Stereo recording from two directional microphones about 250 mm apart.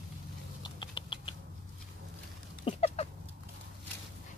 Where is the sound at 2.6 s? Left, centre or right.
Left.